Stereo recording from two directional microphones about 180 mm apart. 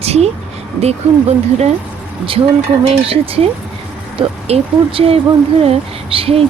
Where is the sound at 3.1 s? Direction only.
35° right (ahead or behind).